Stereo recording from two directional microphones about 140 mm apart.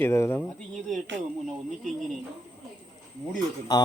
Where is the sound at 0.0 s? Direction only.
20° left (ahead or behind).